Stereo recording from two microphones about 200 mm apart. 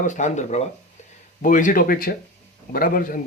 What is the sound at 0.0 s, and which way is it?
Speech, 35° left (ahead or behind).